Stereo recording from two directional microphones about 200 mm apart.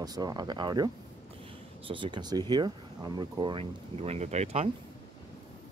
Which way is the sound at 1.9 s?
25° right (ahead or behind).